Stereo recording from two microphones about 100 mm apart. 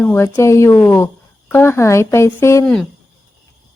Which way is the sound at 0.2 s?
30° left (ahead or behind).